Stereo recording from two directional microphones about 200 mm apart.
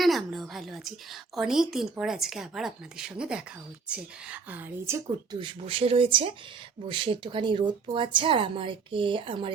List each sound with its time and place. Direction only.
0.0 s a sound: centre (ahead or behind)
1.4 s speech: centre (ahead or behind)
5.4 s speech: 25° right (ahead or behind)